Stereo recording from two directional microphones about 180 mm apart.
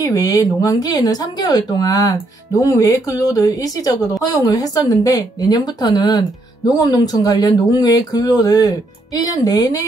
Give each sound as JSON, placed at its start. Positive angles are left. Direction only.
{"t": 0.0, "sound": "speech", "side_deg": 20}